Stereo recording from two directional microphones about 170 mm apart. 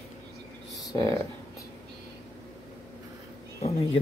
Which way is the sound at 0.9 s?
20° left (ahead or behind).